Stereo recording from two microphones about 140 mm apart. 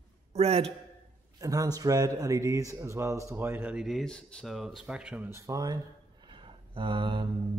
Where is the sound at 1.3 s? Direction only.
25° right (ahead or behind); by 5.2 s 5° right (ahead or behind).